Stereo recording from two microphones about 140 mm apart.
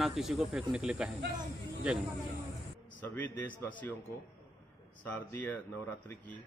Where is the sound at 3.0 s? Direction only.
15° left (ahead or behind).